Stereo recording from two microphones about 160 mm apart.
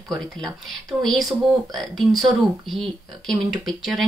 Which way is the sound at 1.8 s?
Centre (ahead or behind).